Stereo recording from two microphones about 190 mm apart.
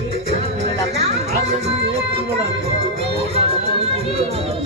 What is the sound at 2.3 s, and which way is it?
Music, 30° right (ahead or behind).